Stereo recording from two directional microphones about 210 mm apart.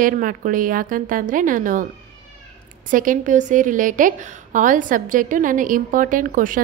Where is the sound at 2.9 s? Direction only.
40° right (ahead or behind).